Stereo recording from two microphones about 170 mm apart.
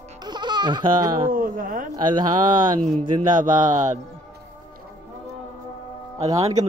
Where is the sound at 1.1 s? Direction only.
55° right (ahead or behind).